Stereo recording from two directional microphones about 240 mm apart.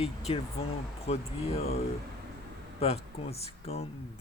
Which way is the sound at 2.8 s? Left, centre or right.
Left.